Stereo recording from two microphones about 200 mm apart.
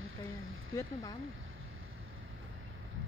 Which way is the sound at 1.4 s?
90° right.